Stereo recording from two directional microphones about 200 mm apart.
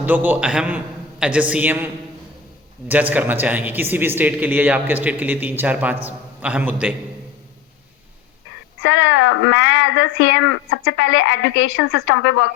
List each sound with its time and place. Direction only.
0.0 s a man's voice: 10° right (ahead or behind)
8.8 s speech: 70° left (ahead or behind)